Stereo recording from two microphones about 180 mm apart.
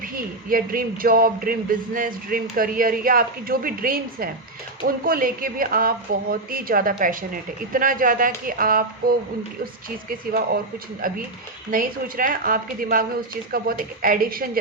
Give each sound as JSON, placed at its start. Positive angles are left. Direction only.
{"t": 0.0, "sound": "speech", "side_deg": -50}